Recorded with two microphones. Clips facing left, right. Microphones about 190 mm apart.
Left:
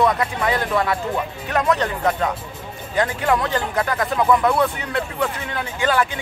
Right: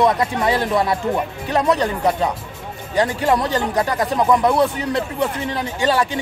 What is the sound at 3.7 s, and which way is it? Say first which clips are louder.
Speech: right 1 dB; 15° right (ahead or behind).